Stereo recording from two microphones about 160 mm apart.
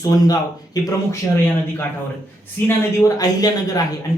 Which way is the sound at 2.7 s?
20° left (ahead or behind).